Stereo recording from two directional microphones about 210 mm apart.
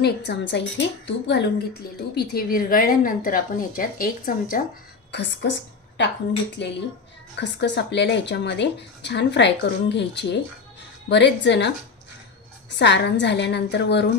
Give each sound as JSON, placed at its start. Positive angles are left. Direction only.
{"t": 0.0, "sound": "a woman's voice", "side_deg": 55}
{"t": 5.1, "sound": "a woman's voice", "side_deg": 55}